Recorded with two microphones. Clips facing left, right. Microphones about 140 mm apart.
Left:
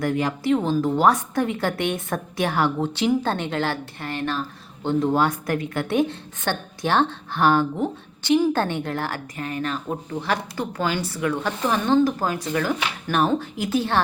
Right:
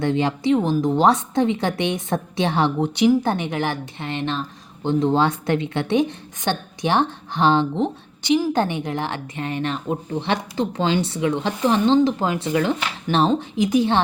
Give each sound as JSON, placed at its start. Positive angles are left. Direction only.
{"t": 0.0, "sound": "a woman's voice", "side_deg": -25}